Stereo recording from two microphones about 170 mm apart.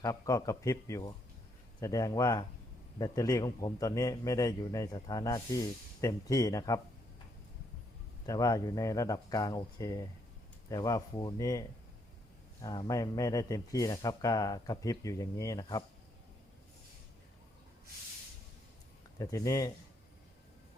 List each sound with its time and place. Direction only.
0.0 s a man's voice: 20° left (ahead or behind)
8.3 s a man's voice: 20° left (ahead or behind)
12.6 s a man's voice: 20° left (ahead or behind)
19.2 s a man's voice: 20° left (ahead or behind)